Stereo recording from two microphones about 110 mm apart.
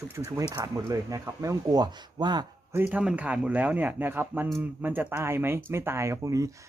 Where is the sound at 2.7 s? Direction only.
15° right (ahead or behind); by 6.5 s 30° right (ahead or behind).